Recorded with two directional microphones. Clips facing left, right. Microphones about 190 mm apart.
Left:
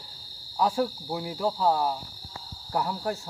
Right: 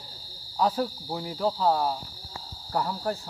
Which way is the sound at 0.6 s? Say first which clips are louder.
Even; 5° left (ahead or behind).